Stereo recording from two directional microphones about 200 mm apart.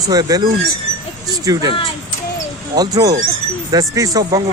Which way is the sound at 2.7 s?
20° right (ahead or behind).